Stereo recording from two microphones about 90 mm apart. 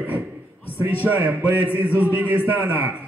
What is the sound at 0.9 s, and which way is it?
A man's voice, 20° right (ahead or behind).